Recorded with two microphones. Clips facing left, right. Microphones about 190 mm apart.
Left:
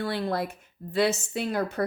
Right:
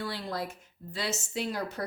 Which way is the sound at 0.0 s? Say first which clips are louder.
Left 6 dB; 55° left (ahead or behind).